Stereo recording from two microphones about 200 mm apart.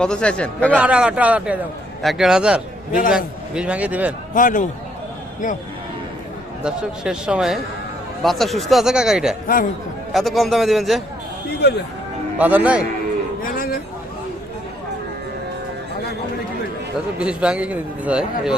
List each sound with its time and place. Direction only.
0.0 s a man's voice: 5° left (ahead or behind)
0.8 s a man's voice: 5° right (ahead or behind)
4.4 s a man's voice: 40° left (ahead or behind)
6.6 s a man's voice: 5° right (ahead or behind)
11.6 s speech: 55° left (ahead or behind)
12.4 s a man's voice: 10° right (ahead or behind)
13.4 s a sound: 45° left (ahead or behind)
17.2 s a man's voice: 5° right (ahead or behind)